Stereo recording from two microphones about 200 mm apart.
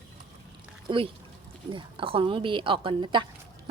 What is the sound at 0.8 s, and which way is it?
A woman's voice, 25° right (ahead or behind).